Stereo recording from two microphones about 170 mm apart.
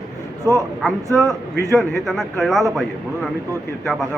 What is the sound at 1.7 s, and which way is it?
A man's voice, centre (ahead or behind).